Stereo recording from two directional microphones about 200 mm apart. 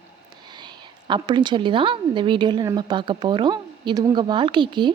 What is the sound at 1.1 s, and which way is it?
A woman's voice, 20° right (ahead or behind).